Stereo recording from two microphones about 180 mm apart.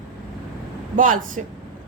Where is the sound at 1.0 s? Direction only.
45° right (ahead or behind).